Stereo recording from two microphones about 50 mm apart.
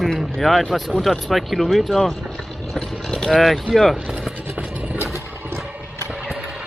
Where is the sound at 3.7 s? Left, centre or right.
Centre.